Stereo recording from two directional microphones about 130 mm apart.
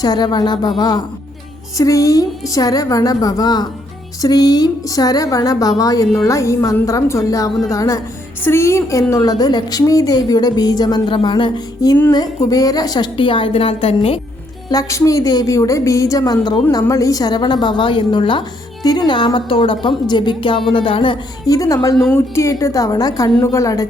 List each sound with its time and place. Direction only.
0.0 s a woman's voice: 35° left (ahead or behind)
14.7 s a woman's voice: 25° left (ahead or behind)